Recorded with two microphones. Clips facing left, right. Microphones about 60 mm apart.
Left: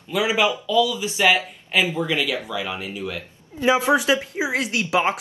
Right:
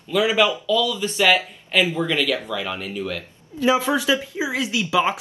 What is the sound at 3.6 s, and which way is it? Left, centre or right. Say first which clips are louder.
A woman's voice: left 1 dB; left.